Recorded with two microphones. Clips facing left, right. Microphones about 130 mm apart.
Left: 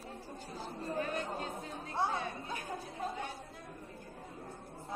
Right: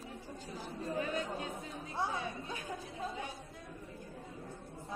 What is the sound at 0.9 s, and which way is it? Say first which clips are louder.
Chatter: even; 45° left (ahead or behind).